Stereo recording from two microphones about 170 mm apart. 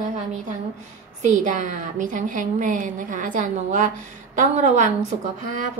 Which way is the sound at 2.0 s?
50° right (ahead or behind).